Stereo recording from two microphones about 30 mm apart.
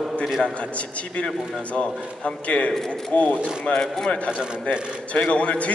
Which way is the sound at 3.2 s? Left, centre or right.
Left.